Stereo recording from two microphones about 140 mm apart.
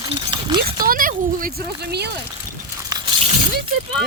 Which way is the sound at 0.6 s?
90° right.